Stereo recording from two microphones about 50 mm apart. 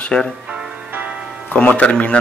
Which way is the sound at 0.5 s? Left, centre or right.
Centre.